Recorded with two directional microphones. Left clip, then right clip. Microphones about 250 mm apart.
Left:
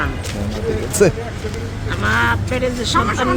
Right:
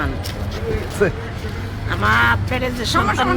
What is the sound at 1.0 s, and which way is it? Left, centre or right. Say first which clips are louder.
Speech: left 5 dB; left.